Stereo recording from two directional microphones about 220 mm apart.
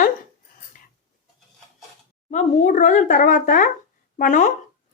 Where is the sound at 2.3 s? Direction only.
30° left (ahead or behind).